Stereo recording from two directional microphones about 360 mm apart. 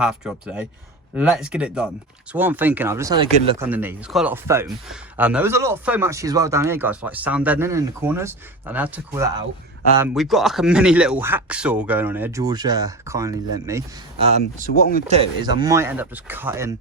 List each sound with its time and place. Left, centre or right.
0.0 s speech: centre
14.7 s speech: left
15.0 s speech: centre